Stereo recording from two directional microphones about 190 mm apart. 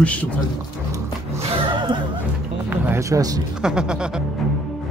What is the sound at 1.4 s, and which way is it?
Music, 25° right (ahead or behind).